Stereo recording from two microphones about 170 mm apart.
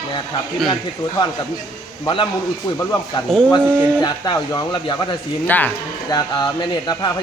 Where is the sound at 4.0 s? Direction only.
25° left (ahead or behind).